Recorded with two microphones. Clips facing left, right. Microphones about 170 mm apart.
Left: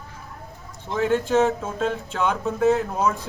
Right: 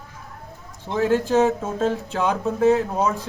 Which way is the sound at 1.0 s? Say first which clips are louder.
Right 1 dB; 35° right (ahead or behind).